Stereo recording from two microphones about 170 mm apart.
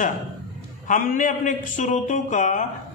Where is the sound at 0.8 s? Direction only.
55° left (ahead or behind).